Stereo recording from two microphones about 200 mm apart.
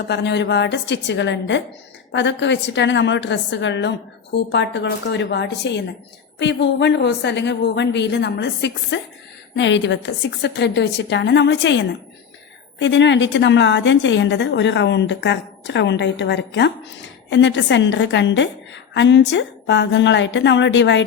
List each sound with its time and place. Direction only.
0.1 s a woman's voice: 60° left (ahead or behind)